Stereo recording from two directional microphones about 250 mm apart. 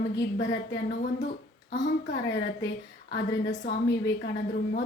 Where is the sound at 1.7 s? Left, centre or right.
Left.